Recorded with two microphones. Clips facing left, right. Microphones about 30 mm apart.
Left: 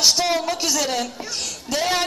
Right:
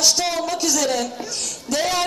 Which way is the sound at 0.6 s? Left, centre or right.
Centre.